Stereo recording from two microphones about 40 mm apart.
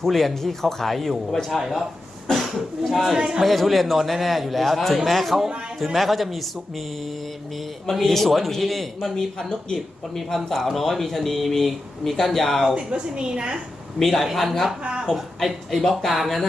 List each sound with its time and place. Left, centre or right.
0.0 s a man's voice: centre
1.5 s speech: centre
2.3 s a sound: centre
3.2 s a woman's voice: centre
3.4 s a man's voice: centre
7.9 s a man's voice: centre
12.7 s a woman's voice: right
14.0 s a man's voice: centre